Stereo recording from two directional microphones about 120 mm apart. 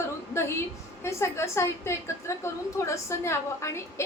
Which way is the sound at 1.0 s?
20° left (ahead or behind).